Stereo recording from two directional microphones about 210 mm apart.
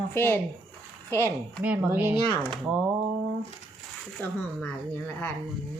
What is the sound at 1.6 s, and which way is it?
Speech, 10° right (ahead or behind).